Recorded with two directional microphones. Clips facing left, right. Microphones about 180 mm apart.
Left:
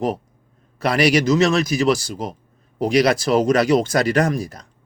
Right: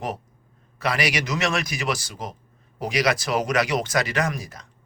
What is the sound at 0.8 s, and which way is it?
A man's voice, 30° left (ahead or behind).